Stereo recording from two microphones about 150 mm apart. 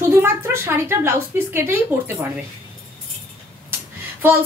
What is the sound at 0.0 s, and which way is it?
A woman's voice, 20° right (ahead or behind).